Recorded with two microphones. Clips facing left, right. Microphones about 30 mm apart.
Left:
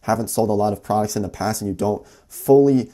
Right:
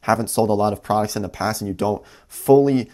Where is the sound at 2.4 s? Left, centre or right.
Right.